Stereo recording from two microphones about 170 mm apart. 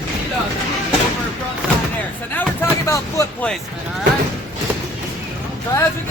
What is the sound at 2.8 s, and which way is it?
Speech, 20° left (ahead or behind).